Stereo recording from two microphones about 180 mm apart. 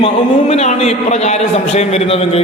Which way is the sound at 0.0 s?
35° left (ahead or behind).